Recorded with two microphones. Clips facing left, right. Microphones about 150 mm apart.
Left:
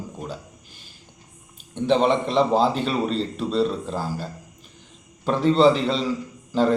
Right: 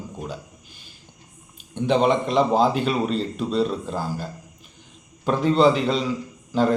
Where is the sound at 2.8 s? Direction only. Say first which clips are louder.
Right 1 dB; 35° left (ahead or behind).